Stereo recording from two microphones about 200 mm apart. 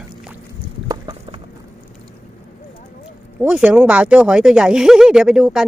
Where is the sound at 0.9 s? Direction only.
25° right (ahead or behind).